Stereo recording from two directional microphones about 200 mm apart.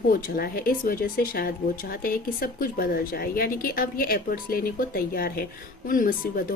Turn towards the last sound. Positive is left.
turn(degrees=45)  # may be behind; listen again after turning